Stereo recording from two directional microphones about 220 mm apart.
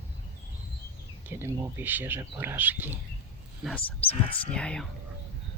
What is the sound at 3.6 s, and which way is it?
Speech, 5° left (ahead or behind).